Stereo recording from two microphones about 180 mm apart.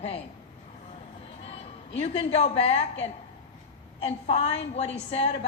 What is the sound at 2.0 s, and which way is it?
A woman's voice, 35° left (ahead or behind).